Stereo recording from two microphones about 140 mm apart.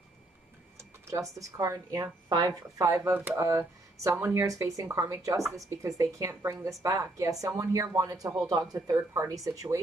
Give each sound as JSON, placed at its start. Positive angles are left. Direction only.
{"t": 1.6, "sound": "speech", "side_deg": -25}